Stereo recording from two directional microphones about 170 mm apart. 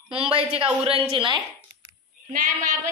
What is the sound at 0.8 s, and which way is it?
Speech, 35° right (ahead or behind).